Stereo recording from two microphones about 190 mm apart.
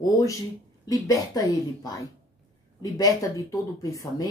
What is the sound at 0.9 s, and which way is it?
A woman's voice, 20° left (ahead or behind).